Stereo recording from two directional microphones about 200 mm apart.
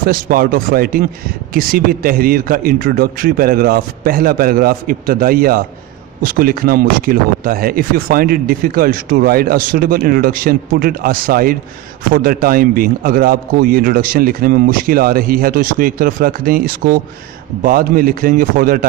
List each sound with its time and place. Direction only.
0.0 s speech: 45° right (ahead or behind)